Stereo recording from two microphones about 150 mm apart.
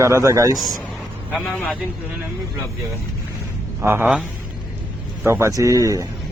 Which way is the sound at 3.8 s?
15° right (ahead or behind).